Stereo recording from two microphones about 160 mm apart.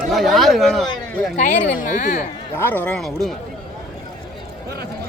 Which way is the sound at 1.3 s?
50° left (ahead or behind).